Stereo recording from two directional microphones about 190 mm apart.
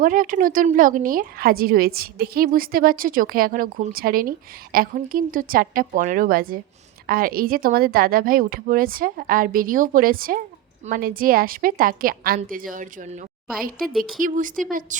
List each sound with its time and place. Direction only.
0.0 s a woman's voice: 45° right (ahead or behind)